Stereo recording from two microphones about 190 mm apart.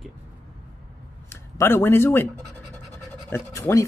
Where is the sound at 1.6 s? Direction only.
10° left (ahead or behind).